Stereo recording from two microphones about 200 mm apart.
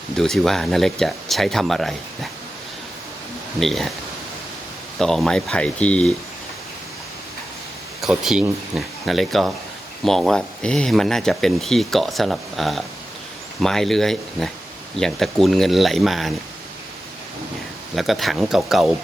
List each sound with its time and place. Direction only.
0.2 s speech: centre (ahead or behind)
3.6 s speech: centre (ahead or behind)
4.9 s speech: centre (ahead or behind)
8.0 s speech: centre (ahead or behind)
17.9 s speech: centre (ahead or behind)